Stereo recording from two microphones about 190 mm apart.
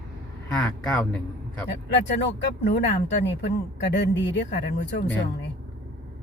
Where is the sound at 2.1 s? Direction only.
65° left (ahead or behind).